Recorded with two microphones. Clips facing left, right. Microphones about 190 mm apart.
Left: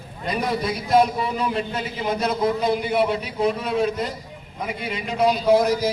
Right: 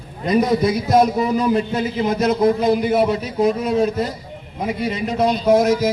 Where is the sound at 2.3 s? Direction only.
45° right (ahead or behind).